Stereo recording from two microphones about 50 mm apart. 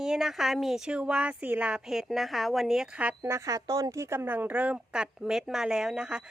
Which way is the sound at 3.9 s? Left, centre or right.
Right.